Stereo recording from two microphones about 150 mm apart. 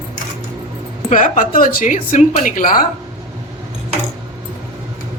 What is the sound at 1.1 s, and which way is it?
Speech, 60° left (ahead or behind).